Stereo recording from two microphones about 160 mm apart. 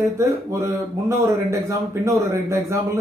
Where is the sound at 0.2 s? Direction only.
20° right (ahead or behind).